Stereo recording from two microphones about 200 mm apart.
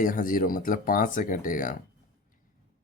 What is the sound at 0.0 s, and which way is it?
Speech, 45° left (ahead or behind).